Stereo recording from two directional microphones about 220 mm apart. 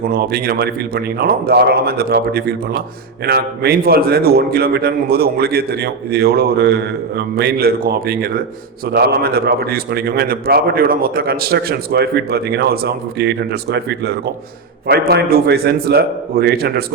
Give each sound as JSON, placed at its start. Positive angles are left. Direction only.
{"t": 0.0, "sound": "a man's voice", "side_deg": -45}